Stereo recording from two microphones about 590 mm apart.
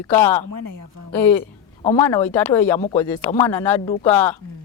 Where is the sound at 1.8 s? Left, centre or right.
Centre.